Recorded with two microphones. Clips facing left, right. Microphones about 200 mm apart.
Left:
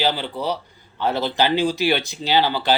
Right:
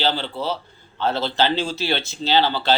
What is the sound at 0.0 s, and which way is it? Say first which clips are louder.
Speech: left 1 dB; 15° left (ahead or behind).